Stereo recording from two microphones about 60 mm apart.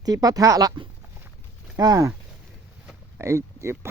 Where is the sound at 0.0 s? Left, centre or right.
Right.